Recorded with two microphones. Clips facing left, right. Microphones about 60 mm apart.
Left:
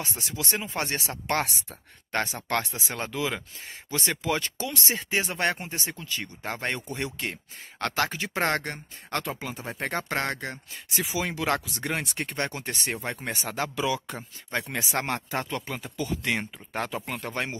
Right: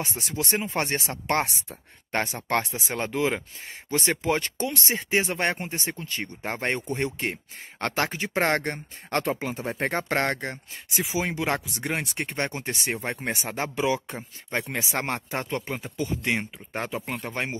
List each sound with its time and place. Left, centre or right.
0.2 s speech: right
10.5 s speech: right